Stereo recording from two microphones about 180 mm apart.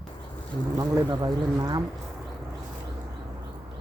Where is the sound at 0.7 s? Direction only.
20° right (ahead or behind).